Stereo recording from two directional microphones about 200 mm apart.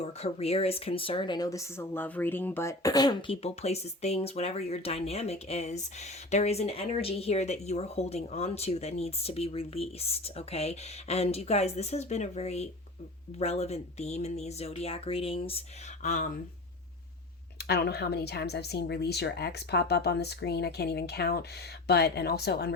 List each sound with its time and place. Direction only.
0.0 s speech: 30° left (ahead or behind)
16.0 s speech: 40° left (ahead or behind)
17.7 s speech: 55° left (ahead or behind)